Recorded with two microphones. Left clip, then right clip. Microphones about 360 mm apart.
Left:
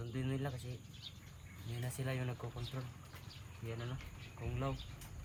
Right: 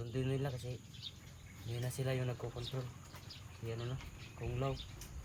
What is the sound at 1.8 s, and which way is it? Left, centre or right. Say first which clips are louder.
Speech: right 3 dB; centre.